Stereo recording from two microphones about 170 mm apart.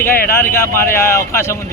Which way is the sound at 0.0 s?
15° left (ahead or behind).